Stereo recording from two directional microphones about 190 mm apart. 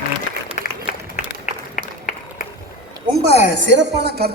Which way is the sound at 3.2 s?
65° right (ahead or behind).